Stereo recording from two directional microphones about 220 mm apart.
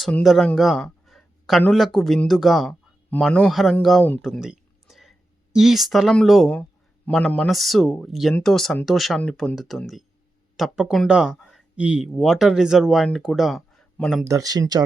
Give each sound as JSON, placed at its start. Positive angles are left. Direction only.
{"t": 0.0, "sound": "speech", "side_deg": 0}
{"t": 14.3, "sound": "speech", "side_deg": -15}